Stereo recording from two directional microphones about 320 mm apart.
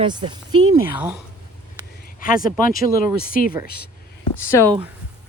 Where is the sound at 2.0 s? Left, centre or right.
Left.